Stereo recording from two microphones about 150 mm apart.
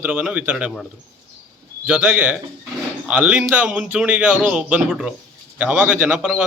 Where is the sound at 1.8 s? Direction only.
10° right (ahead or behind).